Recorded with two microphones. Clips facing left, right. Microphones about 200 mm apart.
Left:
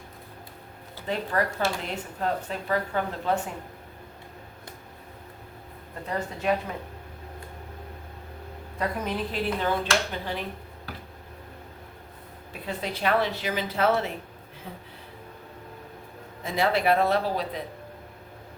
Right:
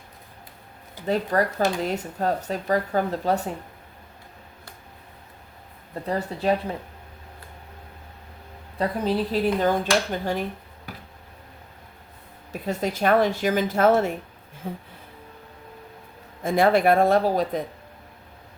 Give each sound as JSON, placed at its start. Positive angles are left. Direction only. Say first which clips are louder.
{"t": 1.0, "sound": "speech", "louder": "right 5 dB", "side_deg": -40}
{"t": 6.1, "sound": "speech", "louder": "right 4 dB", "side_deg": -35}
{"t": 8.8, "sound": "speech", "louder": "right 5 dB", "side_deg": -30}
{"t": 12.6, "sound": "a woman's voice", "louder": "right 5 dB", "side_deg": -45}
{"t": 16.4, "sound": "a woman's voice", "louder": "right 6 dB", "side_deg": -50}